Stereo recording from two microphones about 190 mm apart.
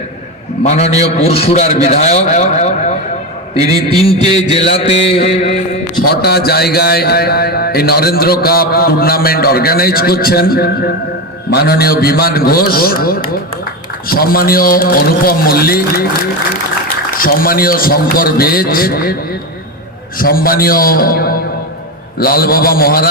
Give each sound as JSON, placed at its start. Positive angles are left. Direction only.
{"t": 0.6, "sound": "a man's voice", "side_deg": 35}
{"t": 4.5, "sound": "a man's voice", "side_deg": 30}
{"t": 6.1, "sound": "a man's voice", "side_deg": 55}
{"t": 17.2, "sound": "a man's voice", "side_deg": 50}
{"t": 20.1, "sound": "a man's voice", "side_deg": 50}